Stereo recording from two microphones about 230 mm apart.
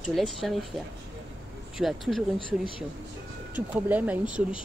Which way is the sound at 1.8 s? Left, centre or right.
Centre.